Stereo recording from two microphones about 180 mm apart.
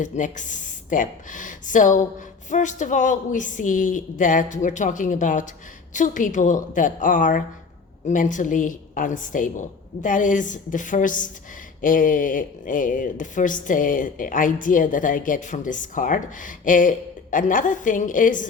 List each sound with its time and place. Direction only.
0.0 s speech: 45° left (ahead or behind)